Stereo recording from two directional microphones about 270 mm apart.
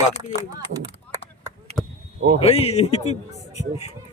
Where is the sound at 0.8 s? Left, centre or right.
Centre.